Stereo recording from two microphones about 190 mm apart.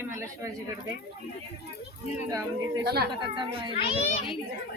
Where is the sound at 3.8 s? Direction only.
30° left (ahead or behind).